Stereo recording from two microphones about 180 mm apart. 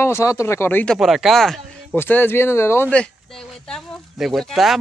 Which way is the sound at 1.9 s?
10° left (ahead or behind).